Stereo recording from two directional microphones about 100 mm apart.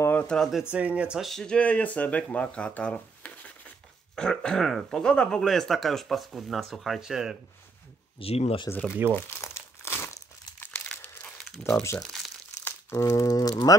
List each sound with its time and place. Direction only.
0.0 s a sound: 20° left (ahead or behind)
0.4 s speech: 5° right (ahead or behind)
0.7 s speech: 15° right (ahead or behind)
1.3 s speech: 10° left (ahead or behind)
8.2 s speech: 75° left (ahead or behind)
8.6 s speech: 20° left (ahead or behind)
9.1 s crumpling: 25° left (ahead or behind); by 11.7 s 5° left (ahead or behind)
12.9 s speech: 35° left (ahead or behind)